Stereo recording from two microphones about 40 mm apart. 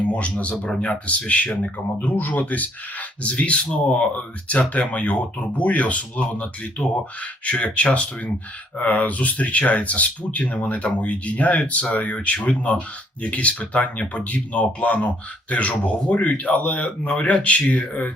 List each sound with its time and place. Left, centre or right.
0.0 s speech: left
2.1 s speech: left
3.2 s speech: left